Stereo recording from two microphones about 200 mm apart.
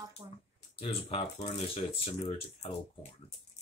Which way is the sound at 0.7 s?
30° left (ahead or behind).